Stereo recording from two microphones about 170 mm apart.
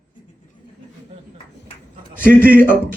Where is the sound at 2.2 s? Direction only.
55° right (ahead or behind).